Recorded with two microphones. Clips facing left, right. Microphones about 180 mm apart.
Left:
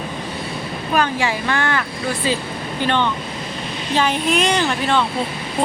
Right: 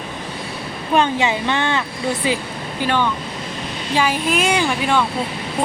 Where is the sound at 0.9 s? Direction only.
20° right (ahead or behind).